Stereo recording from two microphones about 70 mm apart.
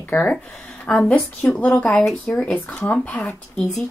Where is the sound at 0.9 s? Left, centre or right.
Centre.